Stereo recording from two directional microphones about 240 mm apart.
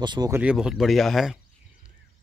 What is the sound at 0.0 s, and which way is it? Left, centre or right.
Speech, centre.